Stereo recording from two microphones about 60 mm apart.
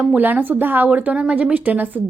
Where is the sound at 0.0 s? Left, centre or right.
Right.